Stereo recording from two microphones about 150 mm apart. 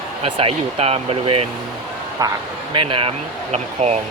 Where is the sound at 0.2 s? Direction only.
40° right (ahead or behind).